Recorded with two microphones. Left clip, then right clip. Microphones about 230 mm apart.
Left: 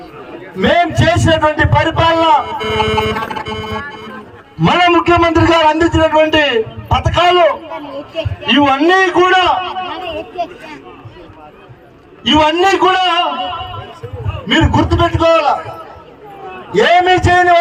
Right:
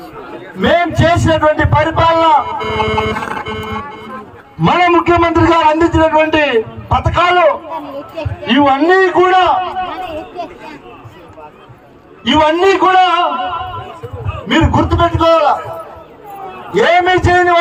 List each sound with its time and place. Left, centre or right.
0.8 s a man's voice: left
9.9 s a sound: left
12.2 s a man's voice: left
16.7 s a man's voice: left